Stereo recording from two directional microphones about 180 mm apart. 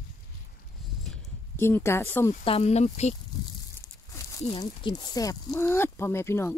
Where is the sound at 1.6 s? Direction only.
15° left (ahead or behind).